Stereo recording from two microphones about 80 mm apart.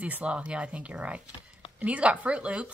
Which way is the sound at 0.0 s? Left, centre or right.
Centre.